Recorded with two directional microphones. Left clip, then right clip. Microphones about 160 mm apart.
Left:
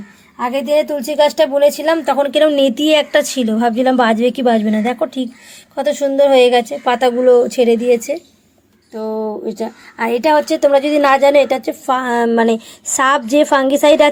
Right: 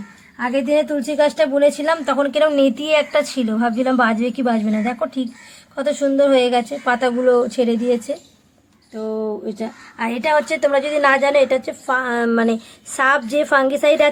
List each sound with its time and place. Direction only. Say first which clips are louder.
0.3 s a woman's voice: left 3 dB; 35° left (ahead or behind)
9.5 s a woman's voice: left 5 dB; 25° left (ahead or behind)